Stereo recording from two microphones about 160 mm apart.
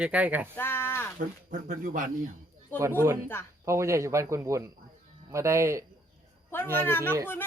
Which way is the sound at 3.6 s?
15° right (ahead or behind).